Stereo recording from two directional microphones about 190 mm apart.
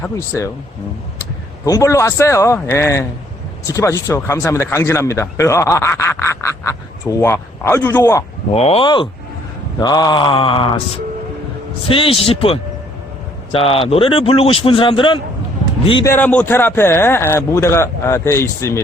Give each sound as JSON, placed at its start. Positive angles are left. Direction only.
{"t": 0.0, "sound": "speech", "side_deg": 15}
{"t": 1.6, "sound": "speech", "side_deg": 15}
{"t": 8.5, "sound": "speech", "side_deg": 30}
{"t": 16.0, "sound": "speech", "side_deg": 10}